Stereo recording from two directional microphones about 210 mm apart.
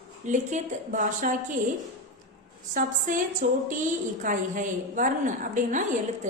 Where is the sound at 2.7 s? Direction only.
40° right (ahead or behind).